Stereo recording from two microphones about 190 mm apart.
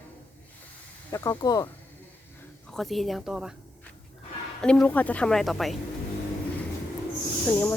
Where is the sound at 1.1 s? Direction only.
20° left (ahead or behind).